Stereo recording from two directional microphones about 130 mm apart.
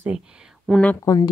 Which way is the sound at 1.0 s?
30° left (ahead or behind).